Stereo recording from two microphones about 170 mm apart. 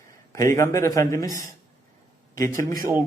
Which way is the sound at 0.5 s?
15° left (ahead or behind).